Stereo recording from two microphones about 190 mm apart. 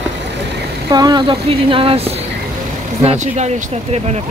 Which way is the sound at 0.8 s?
20° right (ahead or behind).